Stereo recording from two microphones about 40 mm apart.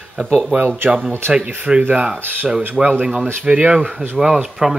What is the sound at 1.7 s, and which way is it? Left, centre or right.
Speech, centre.